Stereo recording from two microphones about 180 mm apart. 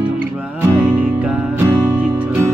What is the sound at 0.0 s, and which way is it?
Music, 10° right (ahead or behind).